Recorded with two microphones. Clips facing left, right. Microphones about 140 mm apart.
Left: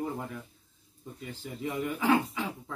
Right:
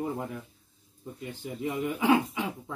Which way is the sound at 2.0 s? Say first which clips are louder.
Right 2 dB; 15° right (ahead or behind).